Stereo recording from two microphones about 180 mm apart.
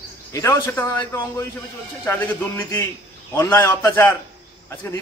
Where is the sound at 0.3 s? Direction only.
15° left (ahead or behind).